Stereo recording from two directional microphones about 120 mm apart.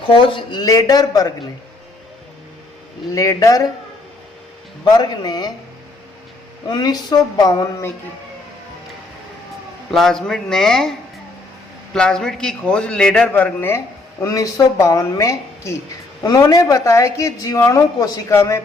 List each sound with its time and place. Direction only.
0.1 s speech: 45° left (ahead or behind)
0.6 s speech: 30° left (ahead or behind)
3.2 s a woman's voice: 30° left (ahead or behind)
4.9 s speech: 35° left (ahead or behind)
6.7 s speech: 35° left (ahead or behind)
9.9 s a man's voice: centre (ahead or behind)
11.9 s a man's voice: 5° left (ahead or behind); by 18.6 s 25° left (ahead or behind)